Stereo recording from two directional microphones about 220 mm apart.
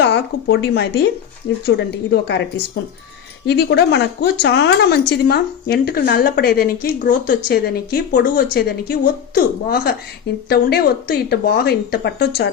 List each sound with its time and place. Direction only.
0.0 s speech: 50° left (ahead or behind)